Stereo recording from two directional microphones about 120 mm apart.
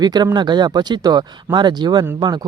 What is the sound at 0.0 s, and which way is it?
Speech, 35° right (ahead or behind).